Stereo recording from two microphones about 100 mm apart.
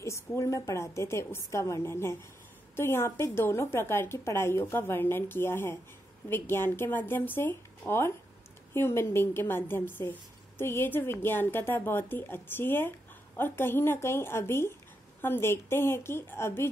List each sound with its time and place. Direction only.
0.3 s a woman's voice: 30° left (ahead or behind)